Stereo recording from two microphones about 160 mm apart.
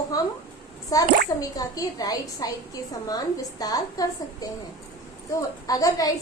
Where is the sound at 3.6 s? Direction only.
25° left (ahead or behind).